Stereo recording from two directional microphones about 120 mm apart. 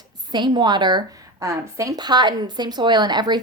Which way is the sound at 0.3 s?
40° right (ahead or behind).